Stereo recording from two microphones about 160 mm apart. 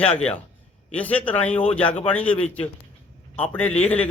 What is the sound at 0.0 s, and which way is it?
A man's voice, 5° left (ahead or behind).